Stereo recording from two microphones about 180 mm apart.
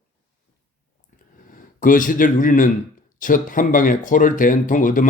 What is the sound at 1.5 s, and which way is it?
Speech, 50° left (ahead or behind).